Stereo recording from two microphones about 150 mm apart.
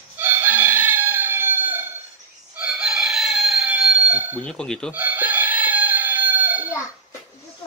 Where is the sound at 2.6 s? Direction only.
5° right (ahead or behind).